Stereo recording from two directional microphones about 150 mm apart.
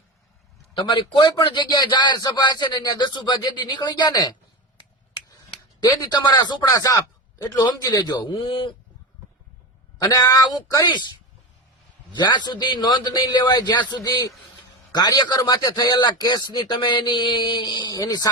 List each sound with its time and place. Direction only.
0.9 s speech: 30° left (ahead or behind)
5.8 s speech: 25° left (ahead or behind)
10.1 s speech: 25° left (ahead or behind)
12.1 s speech: 30° left (ahead or behind)